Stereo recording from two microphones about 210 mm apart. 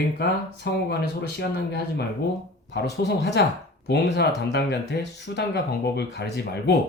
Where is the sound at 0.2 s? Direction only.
50° left (ahead or behind).